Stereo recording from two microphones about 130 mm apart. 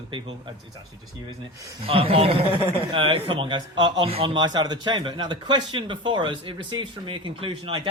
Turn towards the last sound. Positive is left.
turn(degrees=-45)  # may be behind; listen again after turning